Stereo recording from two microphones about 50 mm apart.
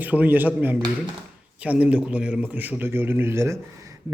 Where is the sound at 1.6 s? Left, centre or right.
Right.